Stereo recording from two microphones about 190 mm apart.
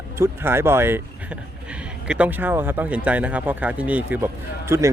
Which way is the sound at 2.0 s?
5° right (ahead or behind).